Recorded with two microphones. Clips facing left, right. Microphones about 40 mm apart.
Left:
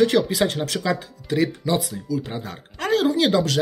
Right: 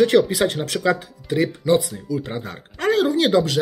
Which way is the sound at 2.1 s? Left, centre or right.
Right.